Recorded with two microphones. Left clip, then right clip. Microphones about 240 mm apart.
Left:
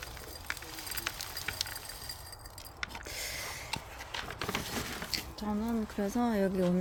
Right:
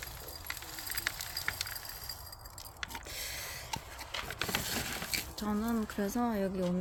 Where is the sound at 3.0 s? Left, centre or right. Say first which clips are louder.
Left 2 dB; centre.